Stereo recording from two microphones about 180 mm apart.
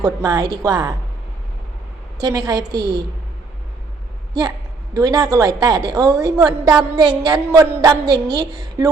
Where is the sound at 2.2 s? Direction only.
20° right (ahead or behind).